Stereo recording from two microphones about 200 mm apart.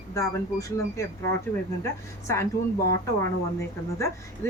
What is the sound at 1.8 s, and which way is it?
Speech, 15° left (ahead or behind).